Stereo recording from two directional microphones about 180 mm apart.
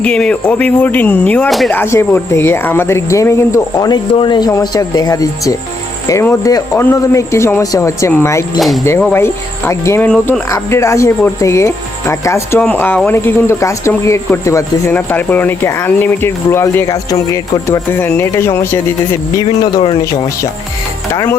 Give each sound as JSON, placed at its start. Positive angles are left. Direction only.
{"t": 0.0, "sound": "speech", "side_deg": 5}
{"t": 8.5, "sound": "speech", "side_deg": 0}
{"t": 9.1, "sound": "speech", "side_deg": 15}
{"t": 19.5, "sound": "speech", "side_deg": 30}